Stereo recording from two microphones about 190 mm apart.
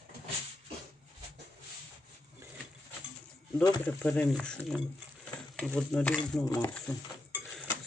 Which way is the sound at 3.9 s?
10° left (ahead or behind).